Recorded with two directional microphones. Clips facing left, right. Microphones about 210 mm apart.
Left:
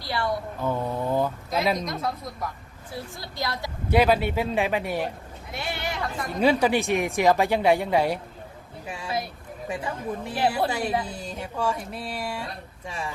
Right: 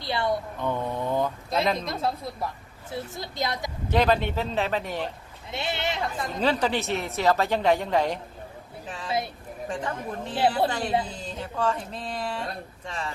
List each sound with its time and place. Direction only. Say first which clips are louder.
0.0 s speech: right 1 dB; 20° right (ahead or behind)
0.6 s mantra: left 1 dB; 5° left (ahead or behind)
1.5 s speech: even; 10° left (ahead or behind)
1.8 s a woman's voice: right 1 dB; 30° right (ahead or behind)
3.8 s speech: left 2 dB; 10° left (ahead or behind)
5.5 s speech: right 2 dB; 25° right (ahead or behind)
6.4 s speech: left 4 dB; 10° left (ahead or behind)